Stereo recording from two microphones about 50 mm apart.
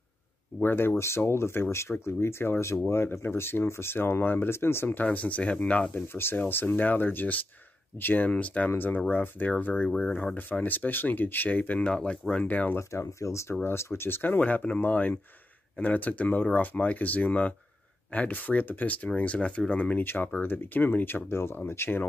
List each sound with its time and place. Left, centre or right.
0.6 s speech: left
4.8 s speech: left
6.1 s speech: left
9.8 s speech: centre
10.3 s speech: left
11.9 s speech: centre
12.4 s speech: left
12.7 s speech: left
13.7 s speech: left
14.4 s speech: left